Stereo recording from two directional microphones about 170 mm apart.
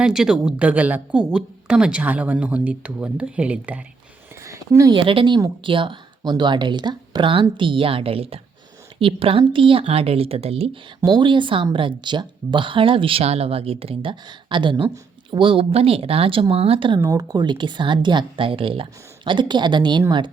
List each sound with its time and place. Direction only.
0.0 s a woman's voice: 5° right (ahead or behind)
4.4 s a sound: 15° right (ahead or behind)
4.9 s speech: 30° right (ahead or behind)
17.0 s speech: 20° right (ahead or behind)